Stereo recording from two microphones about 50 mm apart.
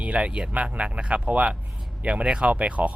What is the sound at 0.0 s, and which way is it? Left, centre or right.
Speech, right.